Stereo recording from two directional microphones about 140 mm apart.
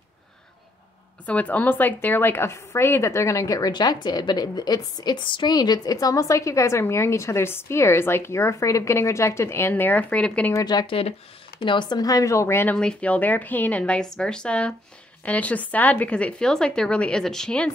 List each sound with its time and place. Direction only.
1.2 s a woman's voice: 10° left (ahead or behind)
10.5 s a woman's voice: 30° left (ahead or behind)
12.7 s a woman's voice: 10° left (ahead or behind)